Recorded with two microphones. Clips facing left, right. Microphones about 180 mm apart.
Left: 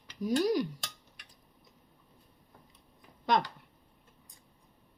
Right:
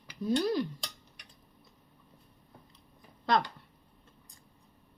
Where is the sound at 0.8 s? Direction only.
Centre (ahead or behind).